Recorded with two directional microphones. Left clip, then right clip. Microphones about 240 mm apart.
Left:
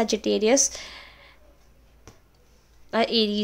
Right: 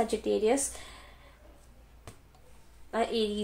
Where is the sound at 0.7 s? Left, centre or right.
Left.